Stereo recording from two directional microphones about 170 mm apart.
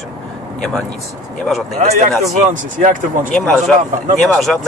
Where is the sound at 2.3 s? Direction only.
45° right (ahead or behind).